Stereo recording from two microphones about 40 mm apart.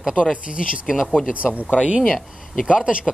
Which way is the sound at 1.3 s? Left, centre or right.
Right.